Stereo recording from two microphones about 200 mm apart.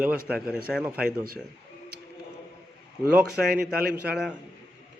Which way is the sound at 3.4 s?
50° right (ahead or behind).